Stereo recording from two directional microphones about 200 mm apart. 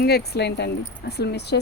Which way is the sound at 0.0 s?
55° left (ahead or behind).